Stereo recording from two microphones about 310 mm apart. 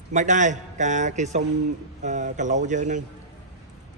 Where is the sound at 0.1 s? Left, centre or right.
Right.